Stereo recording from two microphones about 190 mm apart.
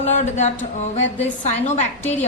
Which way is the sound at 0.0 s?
35° left (ahead or behind).